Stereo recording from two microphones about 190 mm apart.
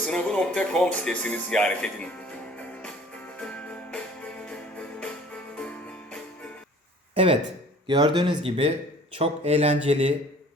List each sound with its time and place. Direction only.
0.0 s speech: 5° left (ahead or behind)
3.3 s music: 5° left (ahead or behind)
7.1 s speech: 30° right (ahead or behind)